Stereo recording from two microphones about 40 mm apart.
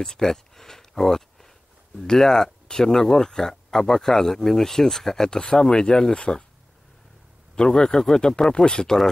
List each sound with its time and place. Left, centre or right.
0.0 s a sound: centre
2.0 s speech: centre
7.5 s speech: left